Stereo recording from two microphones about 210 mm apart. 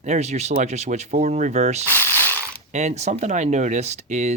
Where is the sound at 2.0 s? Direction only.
10° left (ahead or behind).